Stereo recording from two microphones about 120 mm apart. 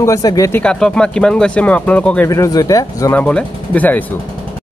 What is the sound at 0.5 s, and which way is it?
Speech, 10° left (ahead or behind).